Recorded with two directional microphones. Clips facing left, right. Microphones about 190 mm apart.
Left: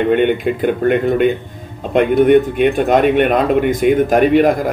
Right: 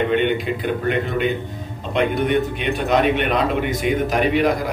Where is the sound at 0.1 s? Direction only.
50° left (ahead or behind).